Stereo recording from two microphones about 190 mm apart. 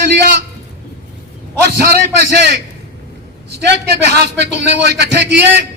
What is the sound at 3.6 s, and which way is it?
A man's voice, 60° right (ahead or behind).